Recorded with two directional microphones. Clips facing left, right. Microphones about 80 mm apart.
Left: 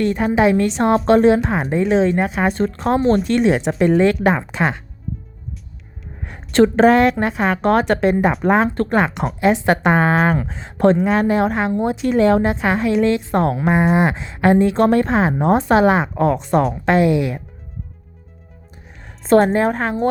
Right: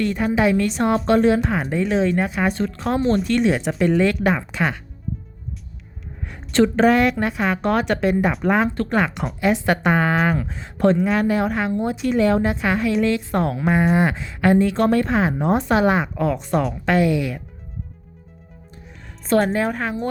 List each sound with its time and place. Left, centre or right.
0.0 s a woman's voice: left
2.6 s a woman's voice: left
6.2 s a woman's voice: left
9.0 s a woman's voice: left
13.7 s a woman's voice: left
16.1 s a woman's voice: left
16.8 s a woman's voice: left
19.3 s a woman's voice: left